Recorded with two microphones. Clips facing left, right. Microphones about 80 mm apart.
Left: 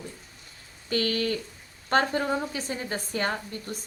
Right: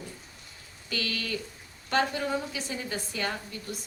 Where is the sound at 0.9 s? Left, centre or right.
Left.